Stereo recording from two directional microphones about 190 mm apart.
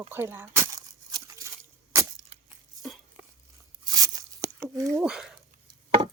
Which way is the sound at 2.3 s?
30° right (ahead or behind).